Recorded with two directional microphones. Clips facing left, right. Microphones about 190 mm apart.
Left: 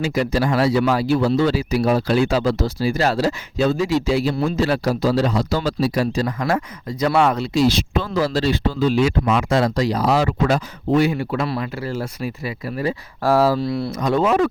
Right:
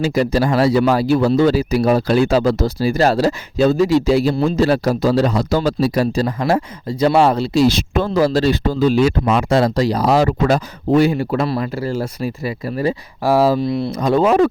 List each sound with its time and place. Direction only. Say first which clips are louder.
0.0 s speech: right 4 dB; 35° right (ahead or behind)
7.7 s speech: right 3 dB; 50° right (ahead or behind)
13.2 s speech: right 2 dB; 15° right (ahead or behind)
13.9 s speech: right 4 dB; 30° right (ahead or behind)